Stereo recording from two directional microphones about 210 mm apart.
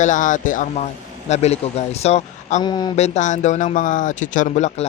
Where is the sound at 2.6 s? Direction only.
20° left (ahead or behind).